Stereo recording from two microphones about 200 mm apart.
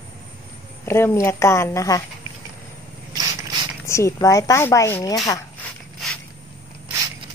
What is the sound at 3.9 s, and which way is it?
Speech, 15° left (ahead or behind).